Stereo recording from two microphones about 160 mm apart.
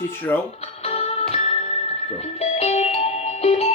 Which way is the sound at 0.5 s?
40° left (ahead or behind).